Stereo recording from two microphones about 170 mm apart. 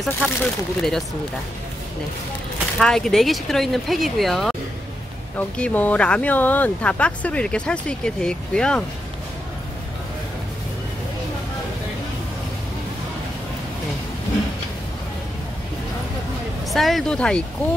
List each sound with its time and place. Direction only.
0.0 s speech: 5° left (ahead or behind)
2.8 s speech: 5° left (ahead or behind)
5.6 s speech: 10° left (ahead or behind)
16.7 s speech: centre (ahead or behind)